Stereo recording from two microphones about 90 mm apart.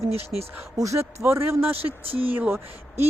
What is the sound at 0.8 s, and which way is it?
Speech, 35° right (ahead or behind).